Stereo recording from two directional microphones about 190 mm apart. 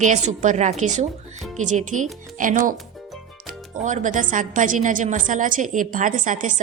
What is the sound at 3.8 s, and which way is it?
A woman's voice, 40° right (ahead or behind).